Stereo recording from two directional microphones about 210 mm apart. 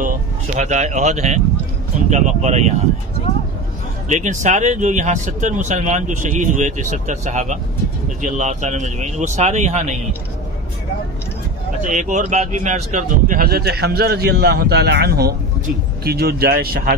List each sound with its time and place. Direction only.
0.6 s speech: 35° right (ahead or behind)
4.1 s speech: 35° right (ahead or behind)
11.8 s speech: 35° right (ahead or behind)